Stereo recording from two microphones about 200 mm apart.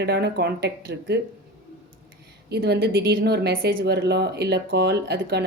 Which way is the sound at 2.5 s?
50° right (ahead or behind).